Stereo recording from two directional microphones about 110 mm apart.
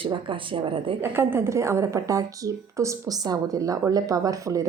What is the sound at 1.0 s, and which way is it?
A woman's voice, 20° right (ahead or behind).